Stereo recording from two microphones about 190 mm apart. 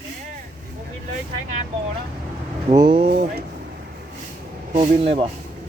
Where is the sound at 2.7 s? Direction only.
25° right (ahead or behind).